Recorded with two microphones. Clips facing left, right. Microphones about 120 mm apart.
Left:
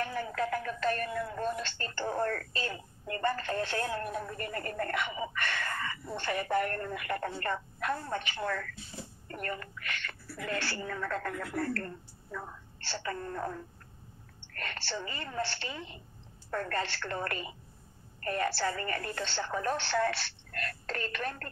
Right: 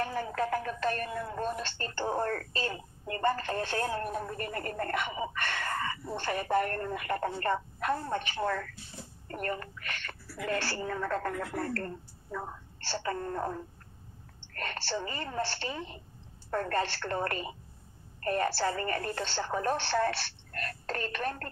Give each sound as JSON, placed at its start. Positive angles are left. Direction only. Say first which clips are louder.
{"t": 0.0, "sound": "speech", "louder": "right 1 dB", "side_deg": -35}